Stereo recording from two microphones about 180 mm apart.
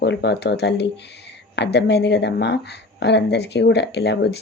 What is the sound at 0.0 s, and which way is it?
Speech, 70° left (ahead or behind).